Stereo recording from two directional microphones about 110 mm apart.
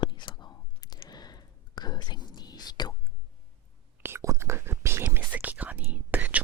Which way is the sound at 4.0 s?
25° right (ahead or behind).